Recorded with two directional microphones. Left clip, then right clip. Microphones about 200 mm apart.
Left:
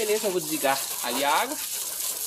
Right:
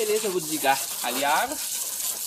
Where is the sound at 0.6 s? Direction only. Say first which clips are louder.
Right 3 dB; 30° left (ahead or behind).